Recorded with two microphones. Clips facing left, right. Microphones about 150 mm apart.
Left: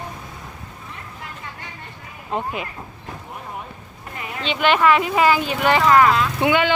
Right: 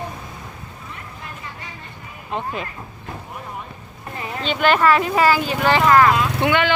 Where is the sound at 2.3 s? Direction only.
10° left (ahead or behind).